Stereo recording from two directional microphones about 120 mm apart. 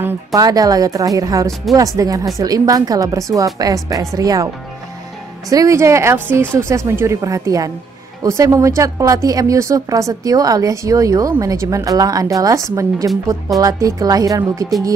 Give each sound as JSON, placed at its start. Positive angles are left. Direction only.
{"t": 0.3, "sound": "speech", "side_deg": -30}
{"t": 5.5, "sound": "speech", "side_deg": -25}